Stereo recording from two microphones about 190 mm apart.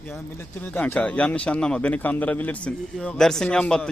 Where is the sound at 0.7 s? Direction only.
10° left (ahead or behind).